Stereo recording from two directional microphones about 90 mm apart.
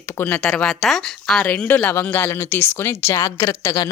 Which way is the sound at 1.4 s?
20° left (ahead or behind).